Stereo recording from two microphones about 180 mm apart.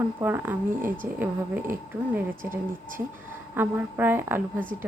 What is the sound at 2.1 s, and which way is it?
Speech, 15° right (ahead or behind).